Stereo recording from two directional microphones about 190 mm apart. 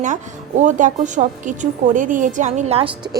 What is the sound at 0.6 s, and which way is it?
A woman's voice, 40° right (ahead or behind).